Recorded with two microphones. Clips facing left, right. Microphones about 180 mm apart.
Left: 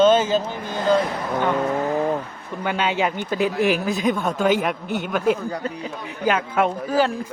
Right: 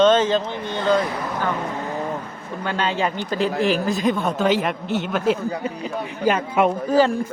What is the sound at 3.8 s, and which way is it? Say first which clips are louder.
A man's voice: right 1 dB; centre (ahead or behind).